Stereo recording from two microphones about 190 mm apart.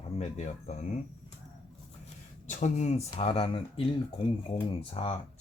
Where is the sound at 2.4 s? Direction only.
40° left (ahead or behind).